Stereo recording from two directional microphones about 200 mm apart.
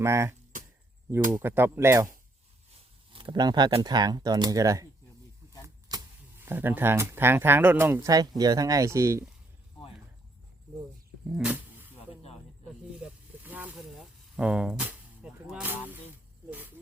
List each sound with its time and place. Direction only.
0.0 s speech: 15° right (ahead or behind)
3.1 s speech: 25° right (ahead or behind)
11.3 s dog: 5° right (ahead or behind)
11.9 s snake: 30° left (ahead or behind)
13.0 s a sound: 10° right (ahead or behind)
16.5 s snake: 10° right (ahead or behind)